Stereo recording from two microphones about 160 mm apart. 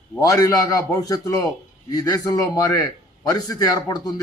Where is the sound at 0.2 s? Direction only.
20° left (ahead or behind).